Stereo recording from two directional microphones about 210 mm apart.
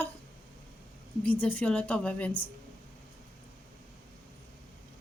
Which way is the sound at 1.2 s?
5° left (ahead or behind).